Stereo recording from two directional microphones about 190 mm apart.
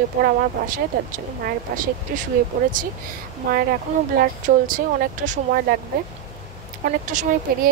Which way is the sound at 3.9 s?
35° right (ahead or behind).